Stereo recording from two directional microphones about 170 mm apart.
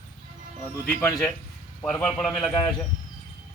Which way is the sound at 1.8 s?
5° left (ahead or behind).